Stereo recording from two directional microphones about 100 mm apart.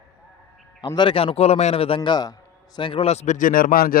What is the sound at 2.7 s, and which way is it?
Speech, 60° left (ahead or behind).